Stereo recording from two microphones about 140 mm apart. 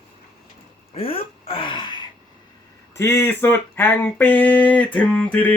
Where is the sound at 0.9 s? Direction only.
40° left (ahead or behind).